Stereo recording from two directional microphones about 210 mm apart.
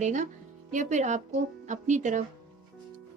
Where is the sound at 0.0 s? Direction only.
35° right (ahead or behind).